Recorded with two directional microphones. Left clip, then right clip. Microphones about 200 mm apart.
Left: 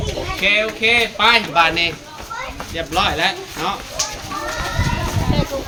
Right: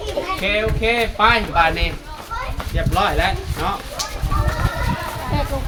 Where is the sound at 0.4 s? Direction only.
50° right (ahead or behind).